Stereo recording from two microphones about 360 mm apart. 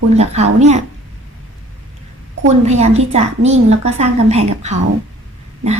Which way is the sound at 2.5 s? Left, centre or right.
Centre.